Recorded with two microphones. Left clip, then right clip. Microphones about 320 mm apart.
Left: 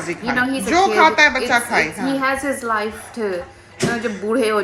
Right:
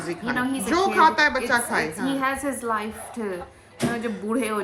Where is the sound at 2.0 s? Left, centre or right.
Centre.